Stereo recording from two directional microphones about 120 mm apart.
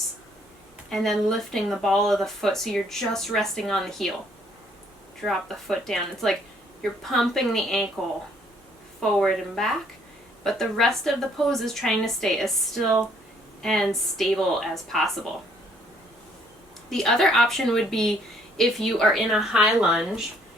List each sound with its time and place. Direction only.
0.9 s a woman's voice: centre (ahead or behind)
5.2 s a woman's voice: centre (ahead or behind)
9.0 s a woman's voice: 5° left (ahead or behind)
13.6 s a woman's voice: 5° left (ahead or behind)
16.9 s a woman's voice: 5° left (ahead or behind)